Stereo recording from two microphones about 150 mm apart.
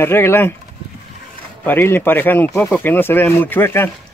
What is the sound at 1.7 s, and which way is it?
Speech, 15° left (ahead or behind).